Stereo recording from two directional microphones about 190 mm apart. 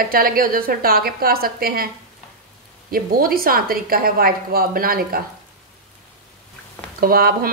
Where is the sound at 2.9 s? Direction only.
50° right (ahead or behind).